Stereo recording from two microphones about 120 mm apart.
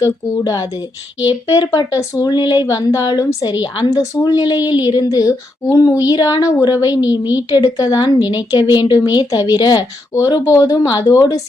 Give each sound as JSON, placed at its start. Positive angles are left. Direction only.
{"t": 0.0, "sound": "a woman's voice", "side_deg": 25}